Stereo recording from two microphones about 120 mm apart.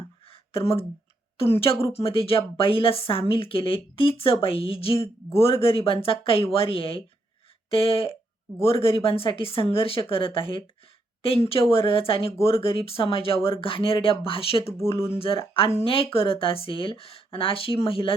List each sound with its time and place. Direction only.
1.4 s a woman's voice: 50° left (ahead or behind)
14.6 s speech: 20° left (ahead or behind)
15.2 s a woman's voice: 50° left (ahead or behind)